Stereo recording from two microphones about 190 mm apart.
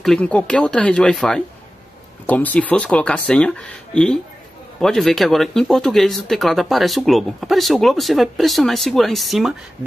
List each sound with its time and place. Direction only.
0.0 s speech: 5° left (ahead or behind)